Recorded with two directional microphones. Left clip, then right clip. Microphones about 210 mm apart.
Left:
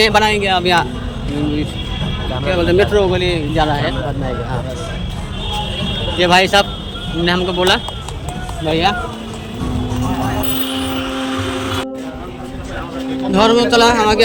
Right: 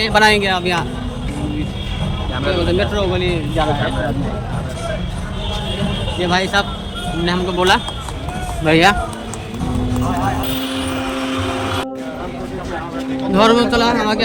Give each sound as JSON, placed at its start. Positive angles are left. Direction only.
{"t": 0.1, "sound": "speech", "side_deg": 0}
{"t": 2.5, "sound": "speech", "side_deg": 20}
{"t": 6.1, "sound": "speech", "side_deg": 10}
{"t": 8.6, "sound": "speech", "side_deg": -20}
{"t": 13.3, "sound": "speech", "side_deg": 0}